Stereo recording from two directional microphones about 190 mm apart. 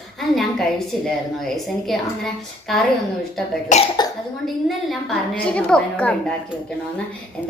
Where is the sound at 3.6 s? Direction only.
35° left (ahead or behind).